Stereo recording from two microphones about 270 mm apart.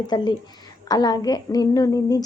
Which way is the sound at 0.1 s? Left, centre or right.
Centre.